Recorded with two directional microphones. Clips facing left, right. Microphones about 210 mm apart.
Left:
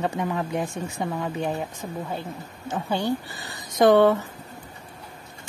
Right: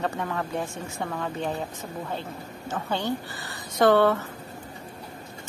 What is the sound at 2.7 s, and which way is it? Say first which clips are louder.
A woman's voice: left 3 dB; 10° left (ahead or behind).